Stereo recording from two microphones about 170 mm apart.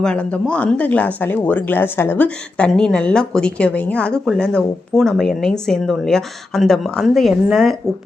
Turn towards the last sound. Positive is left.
turn(degrees=0)  # may be behind; listen again after turning